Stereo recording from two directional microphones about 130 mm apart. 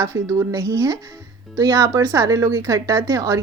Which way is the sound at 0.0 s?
20° right (ahead or behind).